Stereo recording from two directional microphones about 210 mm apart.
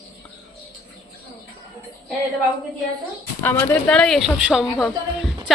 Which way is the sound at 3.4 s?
10° left (ahead or behind).